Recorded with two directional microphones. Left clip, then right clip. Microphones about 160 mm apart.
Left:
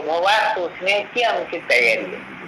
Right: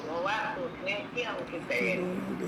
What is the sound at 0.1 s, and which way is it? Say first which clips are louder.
Speech: left 14 dB; 35° left (ahead or behind).